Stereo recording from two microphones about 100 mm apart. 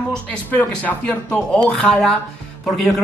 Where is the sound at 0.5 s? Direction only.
20° left (ahead or behind).